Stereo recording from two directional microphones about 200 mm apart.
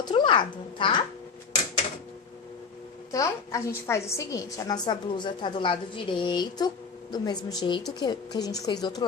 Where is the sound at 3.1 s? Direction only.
15° left (ahead or behind).